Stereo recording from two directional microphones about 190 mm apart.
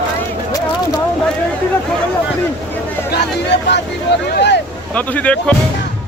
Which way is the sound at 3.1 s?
60° left (ahead or behind).